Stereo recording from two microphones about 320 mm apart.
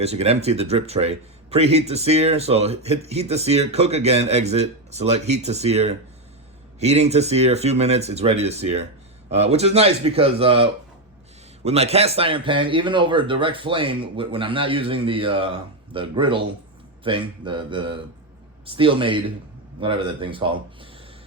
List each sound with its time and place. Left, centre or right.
0.0 s speech: centre